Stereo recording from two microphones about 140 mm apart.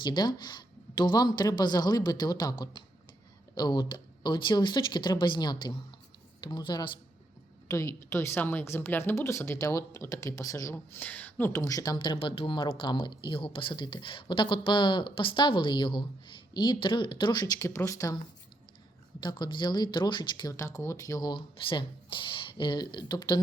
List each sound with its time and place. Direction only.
0.0 s a woman's voice: 35° left (ahead or behind)
7.7 s a woman's voice: 20° left (ahead or behind)
19.2 s a woman's voice: 30° left (ahead or behind)